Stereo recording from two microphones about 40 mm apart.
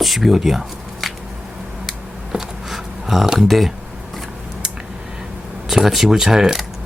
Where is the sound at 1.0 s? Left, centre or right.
Centre.